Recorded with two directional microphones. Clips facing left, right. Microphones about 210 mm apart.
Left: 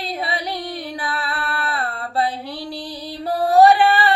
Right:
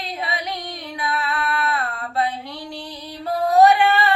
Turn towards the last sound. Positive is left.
turn(degrees=30)  # may be behind; listen again after turning